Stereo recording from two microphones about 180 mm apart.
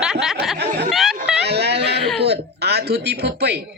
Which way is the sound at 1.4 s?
65° right (ahead or behind).